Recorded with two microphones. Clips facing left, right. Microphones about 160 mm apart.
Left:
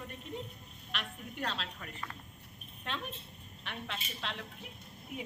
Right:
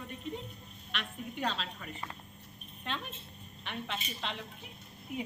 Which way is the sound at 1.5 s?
Centre (ahead or behind).